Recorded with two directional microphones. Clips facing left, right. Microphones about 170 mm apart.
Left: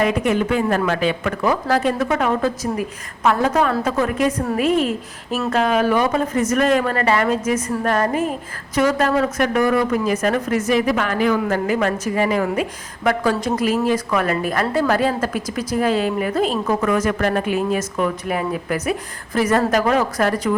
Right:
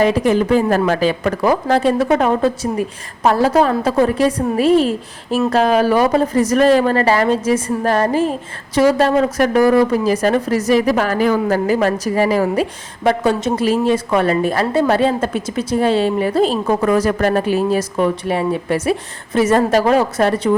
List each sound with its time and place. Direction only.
0.0 s a woman's voice: 30° right (ahead or behind)